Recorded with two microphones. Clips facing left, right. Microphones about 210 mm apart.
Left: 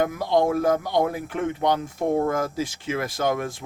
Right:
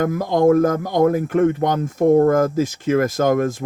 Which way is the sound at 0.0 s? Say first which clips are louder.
Right 5 dB; 45° right (ahead or behind).